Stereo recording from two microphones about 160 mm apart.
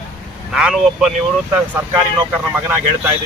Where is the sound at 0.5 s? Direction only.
5° right (ahead or behind).